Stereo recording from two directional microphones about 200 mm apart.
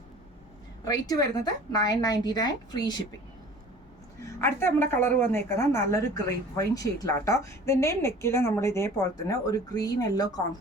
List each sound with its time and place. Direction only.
0.9 s a woman's voice: 20° left (ahead or behind)
4.4 s a woman's voice: 10° left (ahead or behind)